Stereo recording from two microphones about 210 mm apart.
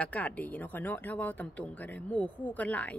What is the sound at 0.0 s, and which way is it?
Speech, 5° left (ahead or behind).